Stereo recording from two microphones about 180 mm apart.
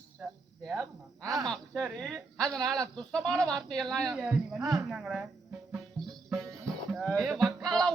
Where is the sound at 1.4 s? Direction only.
5° left (ahead or behind).